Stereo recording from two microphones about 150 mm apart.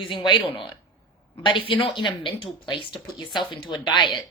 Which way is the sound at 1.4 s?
35° left (ahead or behind).